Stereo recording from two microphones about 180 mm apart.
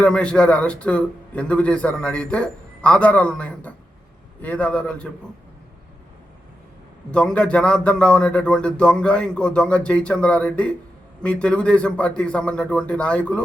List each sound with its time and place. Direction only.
0.0 s a man's voice: 5° left (ahead or behind)
7.1 s a man's voice: 5° left (ahead or behind)